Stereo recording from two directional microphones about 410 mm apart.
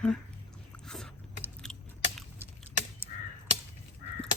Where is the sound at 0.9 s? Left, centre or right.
Centre.